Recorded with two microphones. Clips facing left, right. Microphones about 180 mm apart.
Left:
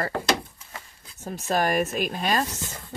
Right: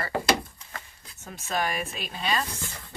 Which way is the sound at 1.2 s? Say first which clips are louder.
Left 5 dB; 35° left (ahead or behind).